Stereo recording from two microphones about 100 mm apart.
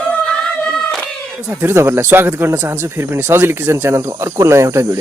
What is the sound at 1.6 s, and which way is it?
Speech, 25° right (ahead or behind).